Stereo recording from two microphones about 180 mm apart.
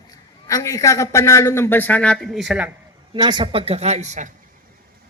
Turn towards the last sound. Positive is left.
turn(degrees=-40)  # may be behind; listen again after turning